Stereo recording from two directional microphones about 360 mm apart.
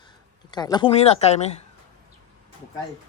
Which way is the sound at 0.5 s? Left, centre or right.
Centre.